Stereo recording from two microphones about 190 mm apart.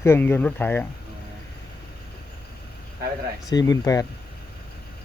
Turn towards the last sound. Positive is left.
turn(degrees=20)  # may be behind; listen again after turning